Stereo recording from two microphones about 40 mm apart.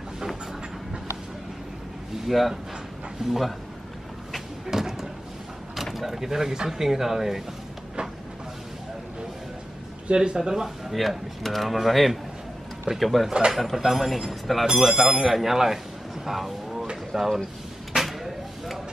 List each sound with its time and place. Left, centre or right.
2.2 s speech: centre
3.2 s speech: centre
4.6 s a sound: centre
5.9 s speech: centre
10.1 s speech: centre
10.9 s speech: centre
14.7 s speech: centre
16.9 s a sound: centre